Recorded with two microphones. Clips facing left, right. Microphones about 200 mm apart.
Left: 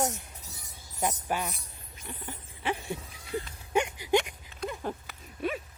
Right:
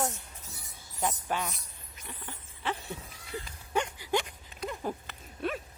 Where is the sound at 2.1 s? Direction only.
20° left (ahead or behind).